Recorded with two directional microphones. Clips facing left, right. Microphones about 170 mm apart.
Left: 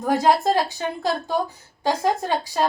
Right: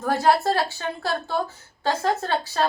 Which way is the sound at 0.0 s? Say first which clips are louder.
Left 2 dB; 15° left (ahead or behind).